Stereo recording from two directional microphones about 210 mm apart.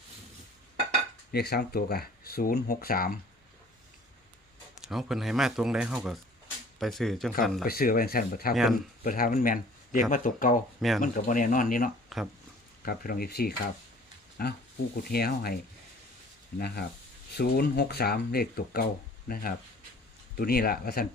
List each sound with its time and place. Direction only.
1.3 s speech: 50° left (ahead or behind)
4.8 s speech: centre (ahead or behind)
7.7 s speech: 45° left (ahead or behind)
8.5 s speech: centre (ahead or behind)
9.0 s speech: 40° left (ahead or behind)
10.8 s speech: centre (ahead or behind)
11.0 s speech: 40° left (ahead or behind)
12.0 s a sound: centre (ahead or behind)
12.8 s speech: 45° left (ahead or behind)
16.6 s speech: 50° left (ahead or behind)